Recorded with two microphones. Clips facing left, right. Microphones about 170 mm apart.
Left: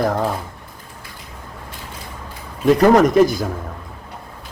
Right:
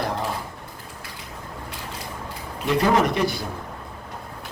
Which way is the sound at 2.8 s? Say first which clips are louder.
Left 9 dB; 45° left (ahead or behind).